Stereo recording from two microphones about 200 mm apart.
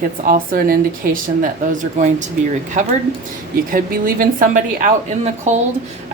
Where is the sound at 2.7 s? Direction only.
35° right (ahead or behind).